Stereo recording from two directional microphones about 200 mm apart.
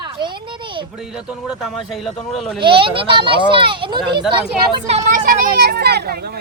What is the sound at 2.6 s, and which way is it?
Speech, 25° right (ahead or behind).